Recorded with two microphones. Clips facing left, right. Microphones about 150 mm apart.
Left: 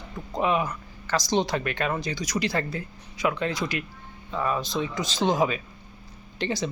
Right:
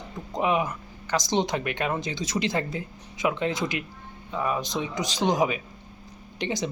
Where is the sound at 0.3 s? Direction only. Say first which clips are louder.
Even; 20° right (ahead or behind).